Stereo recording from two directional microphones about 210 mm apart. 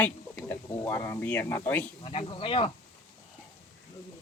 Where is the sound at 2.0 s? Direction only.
25° left (ahead or behind).